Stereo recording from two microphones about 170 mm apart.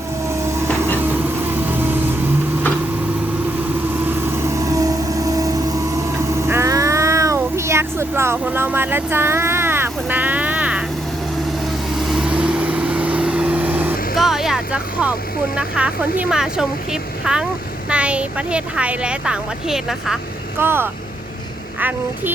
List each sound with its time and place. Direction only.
1.0 s vehicle: 10° right (ahead or behind)
4.0 s vehicle: 15° right (ahead or behind)
6.1 s cat: 15° right (ahead or behind)
11.9 s vehicle: centre (ahead or behind)
15.5 s a woman's voice: 5° right (ahead or behind)
20.6 s a woman's voice: 15° right (ahead or behind)